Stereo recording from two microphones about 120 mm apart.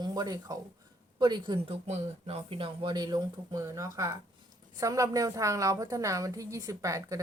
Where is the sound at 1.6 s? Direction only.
60° right (ahead or behind).